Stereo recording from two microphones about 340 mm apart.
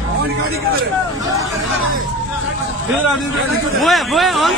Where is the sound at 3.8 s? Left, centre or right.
Centre.